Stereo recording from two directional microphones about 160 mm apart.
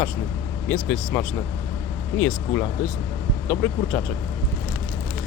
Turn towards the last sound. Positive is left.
turn(degrees=10)  # may be behind; listen again after turning